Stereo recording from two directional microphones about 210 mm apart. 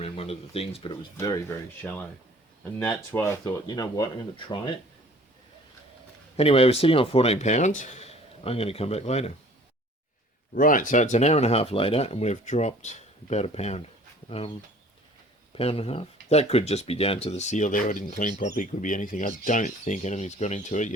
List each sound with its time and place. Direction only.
0.0 s speech: 30° left (ahead or behind)
1.1 s speech: 15° left (ahead or behind)
6.3 s speech: 30° left (ahead or behind)
10.5 s speech: 40° left (ahead or behind)
15.5 s speech: 25° left (ahead or behind)